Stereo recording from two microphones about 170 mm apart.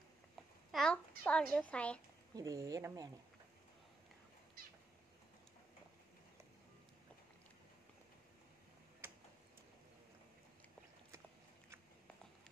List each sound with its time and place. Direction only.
0.7 s a child's voice: 5° left (ahead or behind)
2.3 s speech: 20° right (ahead or behind)
9.0 s tick-tock: 15° right (ahead or behind)